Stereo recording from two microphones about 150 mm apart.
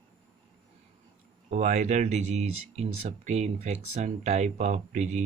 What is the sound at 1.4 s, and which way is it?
Speech, 55° right (ahead or behind).